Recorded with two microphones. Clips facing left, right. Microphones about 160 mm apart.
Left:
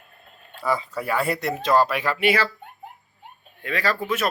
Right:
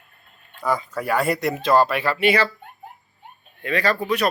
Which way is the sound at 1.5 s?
35° right (ahead or behind).